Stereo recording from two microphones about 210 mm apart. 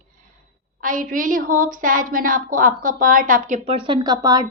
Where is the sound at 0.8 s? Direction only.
40° right (ahead or behind).